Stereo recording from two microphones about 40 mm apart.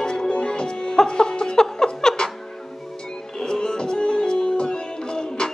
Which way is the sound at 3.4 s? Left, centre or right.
Centre.